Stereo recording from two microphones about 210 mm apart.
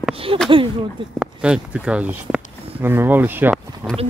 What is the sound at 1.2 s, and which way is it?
Speech, 5° right (ahead or behind).